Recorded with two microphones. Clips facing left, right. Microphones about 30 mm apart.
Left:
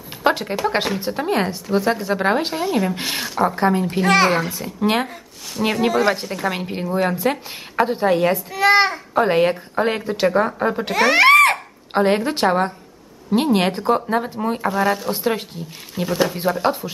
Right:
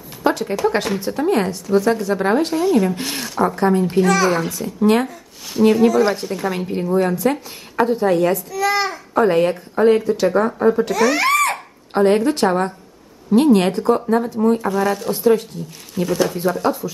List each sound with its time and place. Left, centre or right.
0.2 s speech: left
4.1 s a child's voice: left
4.4 s speech: centre
6.2 s speech: centre
6.6 s speech: left
6.9 s a child's voice: centre; by 9.0 s left
9.1 s speech: left
10.2 s speech: centre
10.6 s speech: left
11.9 s speech: left
15.2 s speech: left
15.9 s speech: centre